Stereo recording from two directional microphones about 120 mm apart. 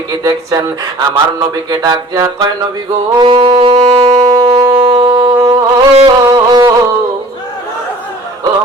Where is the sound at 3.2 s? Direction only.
45° right (ahead or behind).